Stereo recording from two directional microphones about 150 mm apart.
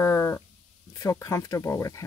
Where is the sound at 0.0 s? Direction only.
20° left (ahead or behind).